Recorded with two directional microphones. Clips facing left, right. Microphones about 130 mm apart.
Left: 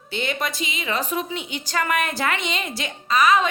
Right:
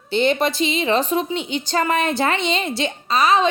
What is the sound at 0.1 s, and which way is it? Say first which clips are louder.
Speech: right 8 dB; 30° right (ahead or behind).